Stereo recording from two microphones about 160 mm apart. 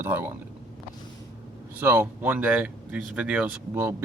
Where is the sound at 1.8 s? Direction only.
15° right (ahead or behind).